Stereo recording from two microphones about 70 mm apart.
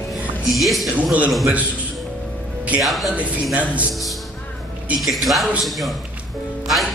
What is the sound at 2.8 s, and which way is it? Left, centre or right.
Speech, centre.